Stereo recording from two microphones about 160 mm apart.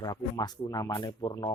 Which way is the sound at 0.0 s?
25° left (ahead or behind).